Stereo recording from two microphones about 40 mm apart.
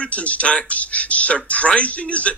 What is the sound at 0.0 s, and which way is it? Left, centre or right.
Speech, left.